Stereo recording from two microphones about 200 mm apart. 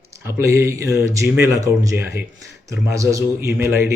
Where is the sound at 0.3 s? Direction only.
15° right (ahead or behind).